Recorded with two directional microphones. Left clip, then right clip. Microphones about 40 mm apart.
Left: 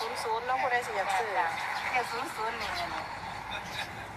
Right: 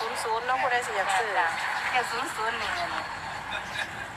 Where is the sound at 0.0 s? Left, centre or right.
Right.